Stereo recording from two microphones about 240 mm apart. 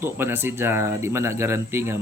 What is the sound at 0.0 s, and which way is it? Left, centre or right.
A man's voice, centre.